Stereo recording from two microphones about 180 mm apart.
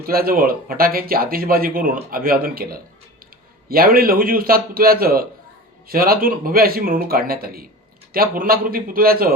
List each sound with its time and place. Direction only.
0.0 s speech: 55° right (ahead or behind)